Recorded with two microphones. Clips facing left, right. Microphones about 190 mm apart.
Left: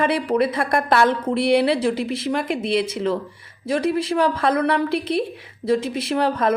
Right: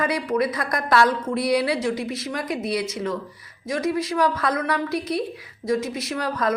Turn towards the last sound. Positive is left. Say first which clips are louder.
# left 5 dB
turn(degrees=30)  # may be behind; listen again after turning